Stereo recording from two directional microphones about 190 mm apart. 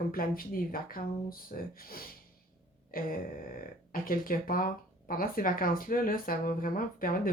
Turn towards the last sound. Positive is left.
turn(degrees=50)  # may be behind; listen again after turning